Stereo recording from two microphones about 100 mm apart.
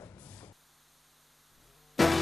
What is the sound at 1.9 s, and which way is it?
Music, centre (ahead or behind).